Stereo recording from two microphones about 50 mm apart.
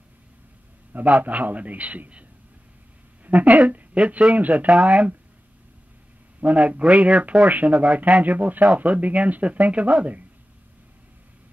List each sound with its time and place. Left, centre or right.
0.9 s speech: right
3.3 s speech: right
6.4 s a man's voice: right